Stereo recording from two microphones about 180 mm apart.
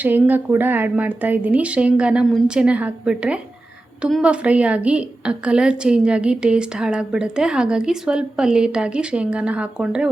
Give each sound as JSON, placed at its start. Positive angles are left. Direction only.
{"t": 0.0, "sound": "a woman's voice", "side_deg": -10}